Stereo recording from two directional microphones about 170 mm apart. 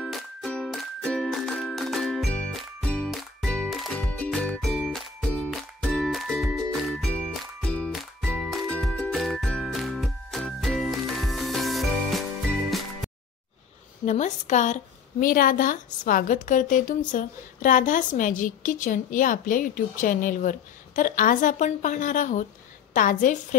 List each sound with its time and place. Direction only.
0.0 s music: centre (ahead or behind)
14.0 s a woman's voice: 45° left (ahead or behind)